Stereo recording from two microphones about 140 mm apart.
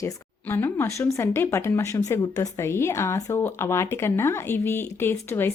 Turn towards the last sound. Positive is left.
turn(degrees=15)  # may be behind; listen again after turning